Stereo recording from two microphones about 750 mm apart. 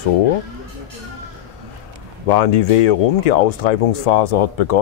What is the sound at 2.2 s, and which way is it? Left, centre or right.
Speech, left.